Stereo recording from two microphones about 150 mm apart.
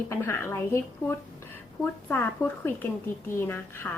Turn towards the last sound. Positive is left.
turn(degrees=15)  # may be behind; listen again after turning